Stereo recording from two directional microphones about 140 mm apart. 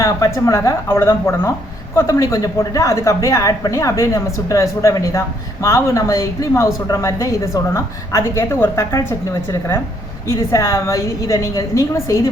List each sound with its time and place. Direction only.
0.0 s a woman's voice: 20° left (ahead or behind)